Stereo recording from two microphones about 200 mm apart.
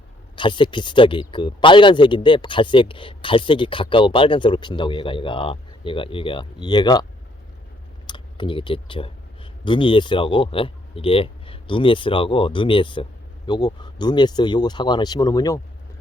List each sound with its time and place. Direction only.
0.3 s speech: 25° left (ahead or behind)
8.0 s speech: 25° left (ahead or behind)